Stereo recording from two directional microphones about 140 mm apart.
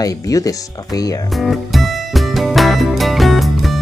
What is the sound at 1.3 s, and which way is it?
Music, centre (ahead or behind).